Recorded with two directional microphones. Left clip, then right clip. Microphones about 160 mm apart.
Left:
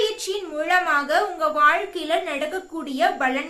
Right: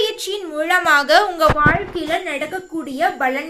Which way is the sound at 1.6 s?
20° right (ahead or behind).